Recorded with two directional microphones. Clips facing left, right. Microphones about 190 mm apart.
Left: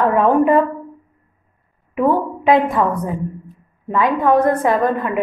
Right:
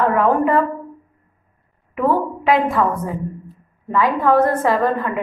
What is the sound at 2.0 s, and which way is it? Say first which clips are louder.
A woman's voice: left 2 dB; 20° left (ahead or behind).